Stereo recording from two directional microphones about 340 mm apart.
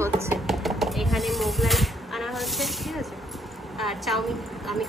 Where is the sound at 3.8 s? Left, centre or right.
Centre.